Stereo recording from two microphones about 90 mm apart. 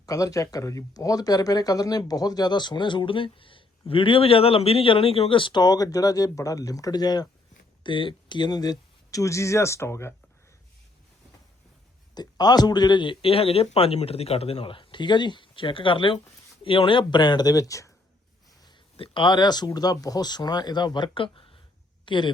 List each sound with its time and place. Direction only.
0.0 s speech: 40° left (ahead or behind)
7.9 s speech: 65° left (ahead or behind); by 10.2 s 30° left (ahead or behind)
12.1 s speech: 50° left (ahead or behind)
18.9 s speech: 70° left (ahead or behind); by 21.2 s 55° left (ahead or behind)
21.3 s a sound: 85° left
22.0 s speech: 60° left (ahead or behind)